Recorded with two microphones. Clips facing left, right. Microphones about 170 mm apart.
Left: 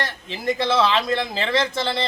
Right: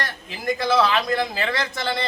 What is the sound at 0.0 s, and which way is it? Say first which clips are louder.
A man's voice: left 2 dB; 25° left (ahead or behind).